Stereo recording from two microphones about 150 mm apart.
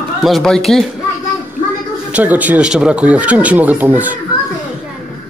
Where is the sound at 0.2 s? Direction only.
Centre (ahead or behind).